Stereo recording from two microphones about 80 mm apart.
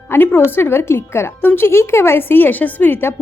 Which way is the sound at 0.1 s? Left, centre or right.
Left.